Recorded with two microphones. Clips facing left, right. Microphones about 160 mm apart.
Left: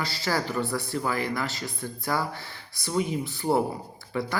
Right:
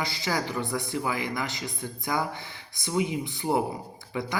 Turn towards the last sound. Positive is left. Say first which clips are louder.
# left 2 dB
turn(degrees=-15)  # may be behind; listen again after turning